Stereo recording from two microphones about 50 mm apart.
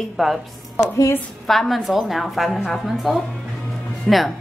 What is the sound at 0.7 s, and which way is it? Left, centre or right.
Speech, left.